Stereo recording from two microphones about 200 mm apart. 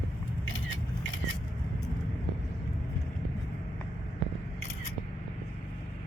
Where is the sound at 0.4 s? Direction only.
75° left (ahead or behind).